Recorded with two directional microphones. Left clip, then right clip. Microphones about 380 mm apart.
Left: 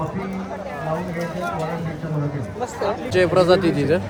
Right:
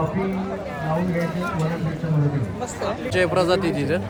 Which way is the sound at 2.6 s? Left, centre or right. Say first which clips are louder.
Left 5 dB; left.